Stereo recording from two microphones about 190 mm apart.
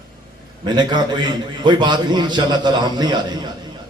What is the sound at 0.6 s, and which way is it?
A man's voice, 20° right (ahead or behind).